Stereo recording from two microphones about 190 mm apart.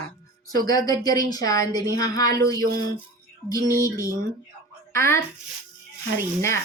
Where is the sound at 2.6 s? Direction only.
50° right (ahead or behind).